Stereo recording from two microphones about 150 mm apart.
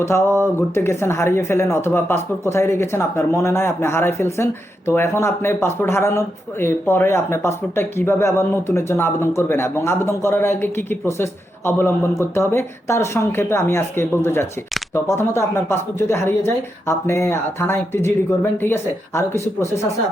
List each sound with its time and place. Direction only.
0.0 s speech: 20° left (ahead or behind)